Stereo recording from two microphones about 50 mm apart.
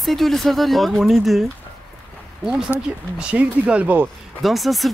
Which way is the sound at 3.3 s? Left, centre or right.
Right.